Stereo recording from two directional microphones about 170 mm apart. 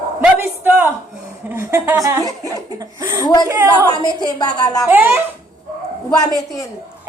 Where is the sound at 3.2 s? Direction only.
25° left (ahead or behind).